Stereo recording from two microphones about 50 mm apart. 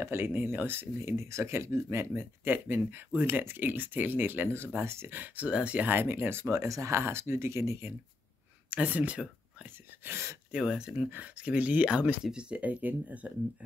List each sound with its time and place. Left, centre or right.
0.0 s speech: right
2.5 s speech: right
4.8 s speech: right
5.1 s speech: right
5.9 s speech: right
6.7 s speech: right
8.6 s speech: right
10.0 s speech: right
11.1 s speech: right
12.3 s speech: right